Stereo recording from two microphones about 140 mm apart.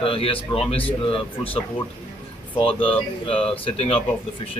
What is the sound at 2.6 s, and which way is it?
A man's voice, 40° left (ahead or behind).